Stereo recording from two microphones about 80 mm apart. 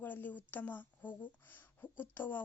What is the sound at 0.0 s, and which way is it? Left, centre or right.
Speech, left.